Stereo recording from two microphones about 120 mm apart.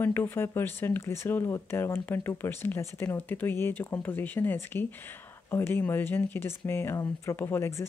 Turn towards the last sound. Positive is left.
turn(degrees=25)  # may be behind; listen again after turning